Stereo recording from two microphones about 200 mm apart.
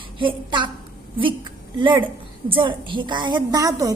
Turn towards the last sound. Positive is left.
turn(degrees=-15)  # may be behind; listen again after turning